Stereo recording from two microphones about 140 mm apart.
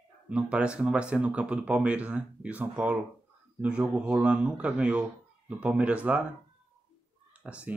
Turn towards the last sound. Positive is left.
turn(degrees=-10)  # may be behind; listen again after turning